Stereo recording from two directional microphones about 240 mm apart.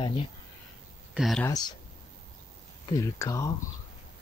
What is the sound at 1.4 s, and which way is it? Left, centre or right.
Speech, centre.